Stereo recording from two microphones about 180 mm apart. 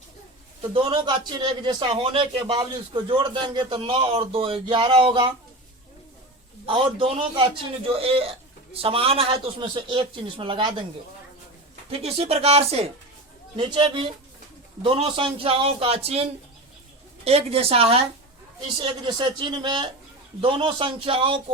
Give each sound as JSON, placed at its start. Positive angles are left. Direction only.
{"t": 0.7, "sound": "a man's voice", "side_deg": -30}
{"t": 6.7, "sound": "a man's voice", "side_deg": -30}
{"t": 11.9, "sound": "a man's voice", "side_deg": -35}